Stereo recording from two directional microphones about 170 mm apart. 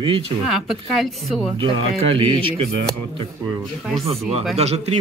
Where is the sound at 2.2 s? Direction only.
35° right (ahead or behind).